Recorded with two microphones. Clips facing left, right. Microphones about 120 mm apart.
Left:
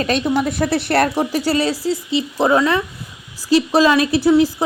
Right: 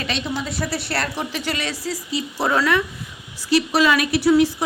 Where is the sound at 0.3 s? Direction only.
55° left (ahead or behind).